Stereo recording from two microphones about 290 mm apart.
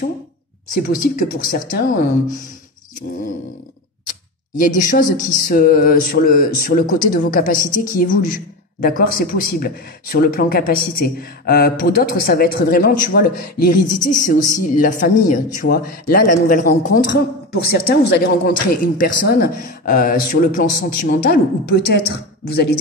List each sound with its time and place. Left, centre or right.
0.7 s speech: left
4.6 s speech: left